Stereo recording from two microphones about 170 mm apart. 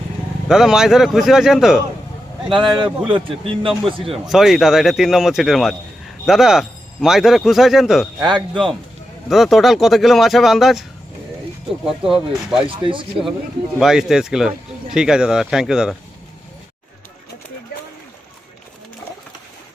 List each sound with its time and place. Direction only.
0.4 s speech: 5° right (ahead or behind)
2.5 s a man's voice: 30° right (ahead or behind)
4.1 s speech: centre (ahead or behind)
8.3 s a man's voice: 30° right (ahead or behind)
9.3 s speech: centre (ahead or behind)
12.0 s a man's voice: 30° right (ahead or behind)
13.7 s speech: 5° right (ahead or behind)